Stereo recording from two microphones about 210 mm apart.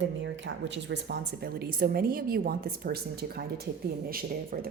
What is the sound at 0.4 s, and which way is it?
A woman's voice, 60° right (ahead or behind).